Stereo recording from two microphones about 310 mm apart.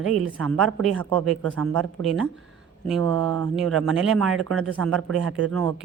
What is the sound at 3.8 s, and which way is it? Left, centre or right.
Speech, centre.